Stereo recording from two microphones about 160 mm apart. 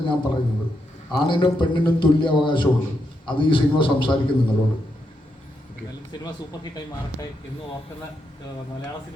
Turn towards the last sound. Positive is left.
turn(degrees=25)  # may be behind; listen again after turning